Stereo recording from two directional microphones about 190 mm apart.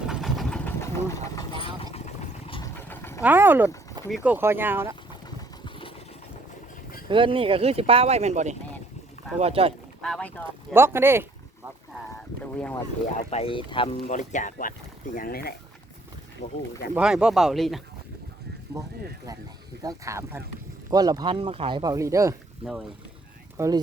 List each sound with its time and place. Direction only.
0.1 s vehicle: centre (ahead or behind)
0.8 s engine: 15° left (ahead or behind)
1.6 s vehicle: 30° left (ahead or behind)
2.7 s vehicle: 10° left (ahead or behind)
3.2 s speech: 10° right (ahead or behind)
7.1 s speech: 25° right (ahead or behind)
10.0 s speech: 5° left (ahead or behind)
10.8 s speech: 15° right (ahead or behind)
12.4 s speech: 5° left (ahead or behind)
13.1 s speech: 30° left (ahead or behind)
14.1 s speech: 40° left (ahead or behind)
16.9 s speech: 5° right (ahead or behind)
18.7 s speech: 15° right (ahead or behind)
23.6 s speech: 15° right (ahead or behind)